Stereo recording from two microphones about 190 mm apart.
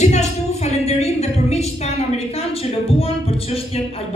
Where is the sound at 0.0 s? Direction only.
35° left (ahead or behind).